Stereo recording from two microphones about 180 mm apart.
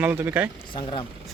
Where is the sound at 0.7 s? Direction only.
25° left (ahead or behind).